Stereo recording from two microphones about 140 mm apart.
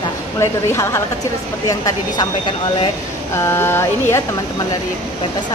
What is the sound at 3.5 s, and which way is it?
Speech, 20° left (ahead or behind).